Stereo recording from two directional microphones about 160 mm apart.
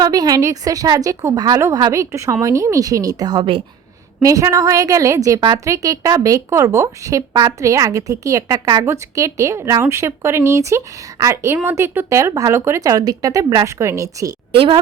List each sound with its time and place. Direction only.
0.0 s a woman's voice: 25° right (ahead or behind)
4.2 s a woman's voice: 20° right (ahead or behind)
14.5 s a woman's voice: 35° right (ahead or behind)